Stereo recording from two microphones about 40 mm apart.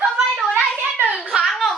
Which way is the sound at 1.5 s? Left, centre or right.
Centre.